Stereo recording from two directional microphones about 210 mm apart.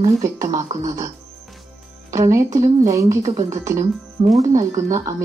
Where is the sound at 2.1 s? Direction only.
15° right (ahead or behind).